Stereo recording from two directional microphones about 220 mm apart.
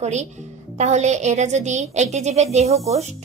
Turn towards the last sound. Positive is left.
turn(degrees=-30)  # may be behind; listen again after turning